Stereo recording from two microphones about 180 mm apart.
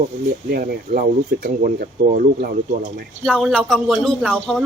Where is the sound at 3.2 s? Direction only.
Centre (ahead or behind).